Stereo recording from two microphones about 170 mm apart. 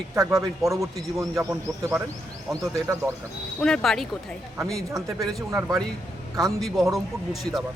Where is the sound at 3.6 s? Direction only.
5° left (ahead or behind).